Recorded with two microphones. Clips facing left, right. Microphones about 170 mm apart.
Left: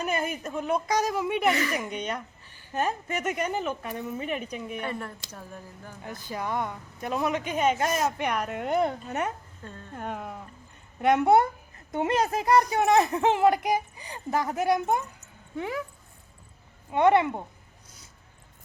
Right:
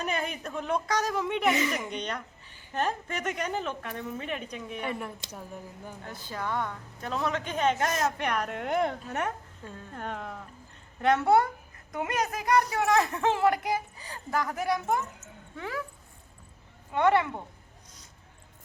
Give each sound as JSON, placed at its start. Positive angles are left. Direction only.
{"t": 0.0, "sound": "speech", "side_deg": 5}
{"t": 4.8, "sound": "speech", "side_deg": -10}
{"t": 6.2, "sound": "speech", "side_deg": 15}
{"t": 11.9, "sound": "speech", "side_deg": 30}
{"t": 16.9, "sound": "speech", "side_deg": 20}